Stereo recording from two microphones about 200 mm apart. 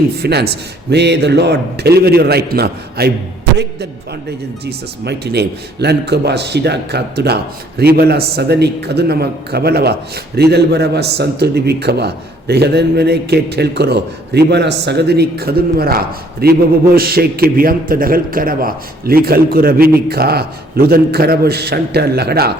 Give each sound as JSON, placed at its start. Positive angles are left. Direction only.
{"t": 0.2, "sound": "a man's voice", "side_deg": -55}
{"t": 4.6, "sound": "a man's voice", "side_deg": -55}